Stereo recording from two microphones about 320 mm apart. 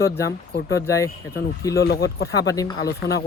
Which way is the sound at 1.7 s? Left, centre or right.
Left.